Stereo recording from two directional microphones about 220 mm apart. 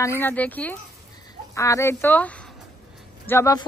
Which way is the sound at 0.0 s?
10° left (ahead or behind).